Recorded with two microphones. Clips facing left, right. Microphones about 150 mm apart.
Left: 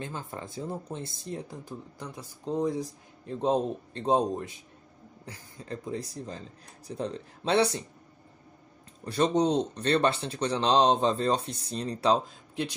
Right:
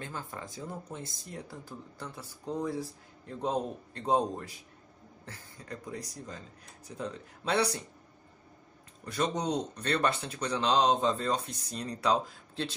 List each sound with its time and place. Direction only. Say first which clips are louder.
0.0 s speech: left 3 dB; 20° left (ahead or behind)
5.7 s speech: left 6 dB; 25° left (ahead or behind)
9.0 s speech: left 7 dB; 30° left (ahead or behind)
12.6 s speech: left 3 dB; 15° left (ahead or behind)